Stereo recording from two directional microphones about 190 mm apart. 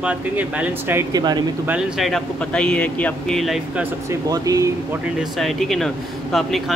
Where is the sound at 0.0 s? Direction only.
5° right (ahead or behind).